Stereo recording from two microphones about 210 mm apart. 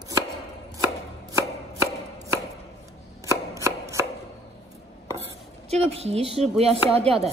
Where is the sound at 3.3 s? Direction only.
15° right (ahead or behind).